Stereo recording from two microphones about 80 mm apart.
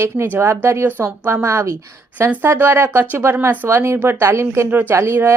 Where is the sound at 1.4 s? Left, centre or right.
Right.